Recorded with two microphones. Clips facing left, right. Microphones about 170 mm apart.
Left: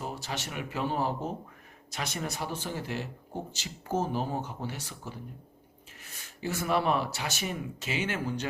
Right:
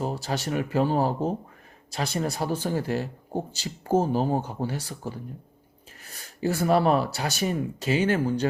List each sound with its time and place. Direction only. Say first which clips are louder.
0.0 s speech: right 8 dB; 35° right (ahead or behind)